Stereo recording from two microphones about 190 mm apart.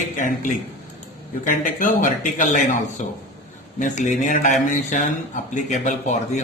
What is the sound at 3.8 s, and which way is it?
Speech, 40° left (ahead or behind).